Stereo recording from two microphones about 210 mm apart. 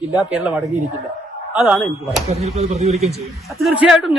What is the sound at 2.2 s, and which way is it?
Speech, 30° right (ahead or behind).